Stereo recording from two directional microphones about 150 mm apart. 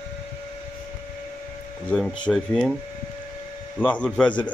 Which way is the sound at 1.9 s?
5° left (ahead or behind).